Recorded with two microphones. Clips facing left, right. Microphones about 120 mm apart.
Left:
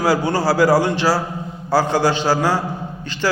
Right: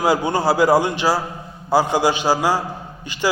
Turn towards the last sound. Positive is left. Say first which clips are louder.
# left 1 dB
turn(degrees=-15)  # may be behind; listen again after turning